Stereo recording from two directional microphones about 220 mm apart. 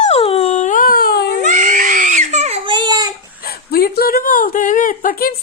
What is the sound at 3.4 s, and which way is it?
Speech, 45° left (ahead or behind).